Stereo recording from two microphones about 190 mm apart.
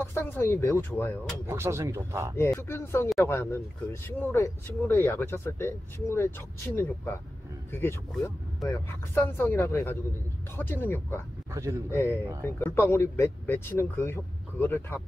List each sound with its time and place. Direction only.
0.0 s speech: 10° left (ahead or behind)
1.5 s speech: 15° right (ahead or behind)
2.3 s speech: 15° left (ahead or behind)